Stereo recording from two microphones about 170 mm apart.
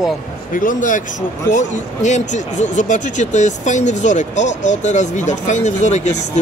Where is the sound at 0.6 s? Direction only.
50° left (ahead or behind).